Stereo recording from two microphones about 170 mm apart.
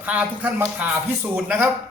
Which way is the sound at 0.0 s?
10° right (ahead or behind).